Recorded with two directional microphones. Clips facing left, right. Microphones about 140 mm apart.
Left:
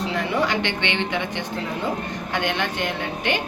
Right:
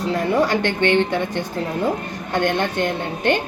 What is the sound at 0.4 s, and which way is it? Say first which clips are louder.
Speech: right 5 dB; 45° right (ahead or behind).